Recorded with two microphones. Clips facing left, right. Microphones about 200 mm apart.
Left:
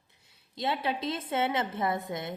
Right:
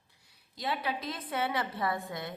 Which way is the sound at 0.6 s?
25° left (ahead or behind).